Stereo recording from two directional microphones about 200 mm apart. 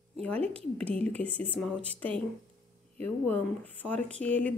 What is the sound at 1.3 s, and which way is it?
Speech, 30° right (ahead or behind).